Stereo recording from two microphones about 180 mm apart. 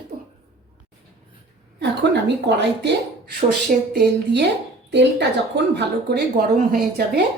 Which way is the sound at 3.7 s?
50° right (ahead or behind).